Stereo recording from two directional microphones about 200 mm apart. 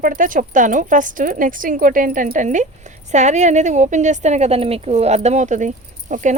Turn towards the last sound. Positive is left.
turn(degrees=-40)  # may be behind; listen again after turning